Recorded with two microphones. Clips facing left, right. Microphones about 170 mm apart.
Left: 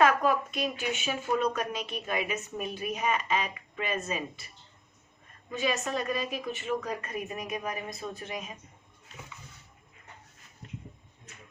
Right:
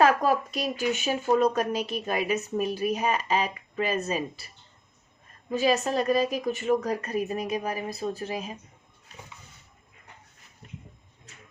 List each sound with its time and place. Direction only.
0.0 s speech: 35° right (ahead or behind)
5.5 s speech: 35° right (ahead or behind)